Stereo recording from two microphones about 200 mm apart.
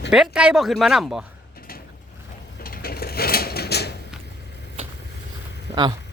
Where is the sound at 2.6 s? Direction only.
50° left (ahead or behind).